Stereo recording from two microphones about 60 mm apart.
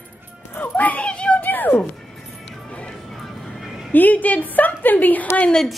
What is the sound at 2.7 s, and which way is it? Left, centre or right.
Music, left.